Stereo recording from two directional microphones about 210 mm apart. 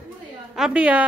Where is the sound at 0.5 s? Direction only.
5° right (ahead or behind).